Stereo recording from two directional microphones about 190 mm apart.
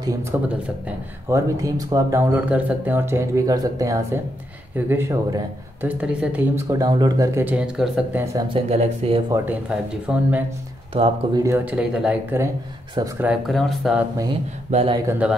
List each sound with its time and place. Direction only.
0.0 s speech: 15° right (ahead or behind)
8.5 s speech: 35° right (ahead or behind)
9.3 s speech: 10° right (ahead or behind)
10.9 s speech: 30° right (ahead or behind)
11.4 s speech: 10° right (ahead or behind)
14.7 s speech: 35° right (ahead or behind)
15.0 s speech: 10° right (ahead or behind)